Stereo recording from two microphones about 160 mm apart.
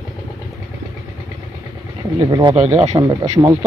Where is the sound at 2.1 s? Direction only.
25° right (ahead or behind).